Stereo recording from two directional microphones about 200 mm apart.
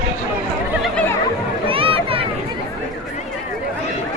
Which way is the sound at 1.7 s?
25° right (ahead or behind).